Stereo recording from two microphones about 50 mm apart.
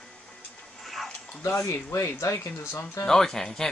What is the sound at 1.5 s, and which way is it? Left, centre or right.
Speech, left.